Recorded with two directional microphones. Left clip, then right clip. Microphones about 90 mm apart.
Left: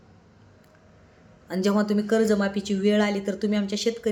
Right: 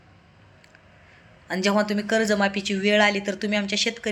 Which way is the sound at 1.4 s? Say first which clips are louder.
Right 2 dB; 40° left (ahead or behind).